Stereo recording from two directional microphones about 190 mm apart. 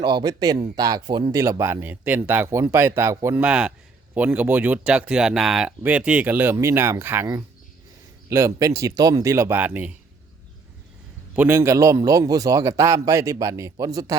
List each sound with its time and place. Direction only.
0.0 s speech: 25° right (ahead or behind); by 9.9 s 10° right (ahead or behind)
11.3 s speech: 10° right (ahead or behind)